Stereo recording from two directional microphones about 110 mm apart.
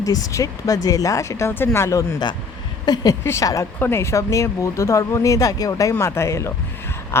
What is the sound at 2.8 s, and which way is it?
Speech, 35° left (ahead or behind).